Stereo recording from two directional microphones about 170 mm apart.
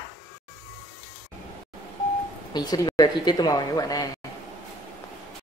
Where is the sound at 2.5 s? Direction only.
25° left (ahead or behind).